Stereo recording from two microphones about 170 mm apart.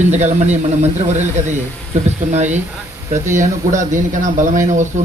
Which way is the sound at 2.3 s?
45° right (ahead or behind).